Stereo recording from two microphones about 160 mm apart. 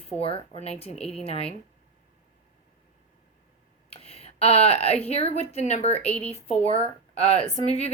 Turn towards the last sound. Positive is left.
turn(degrees=40)  # may be behind; listen again after turning